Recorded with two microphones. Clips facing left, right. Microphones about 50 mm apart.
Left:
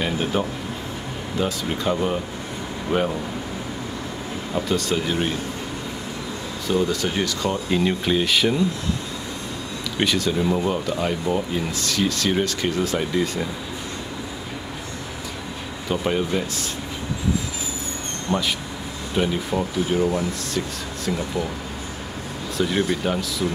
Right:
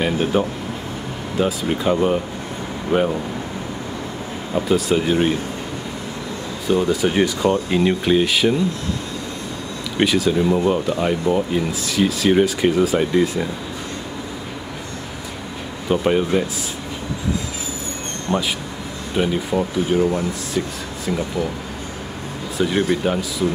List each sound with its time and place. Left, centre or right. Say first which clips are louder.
0.0 s speech: right 4 dB; centre
4.6 s speech: right 5 dB; centre
6.7 s speech: right 4 dB; centre
9.9 s speech: right 5 dB; centre
15.9 s speech: right 5 dB; centre
18.3 s speech: right 2 dB; centre
22.6 s speech: right 3 dB; centre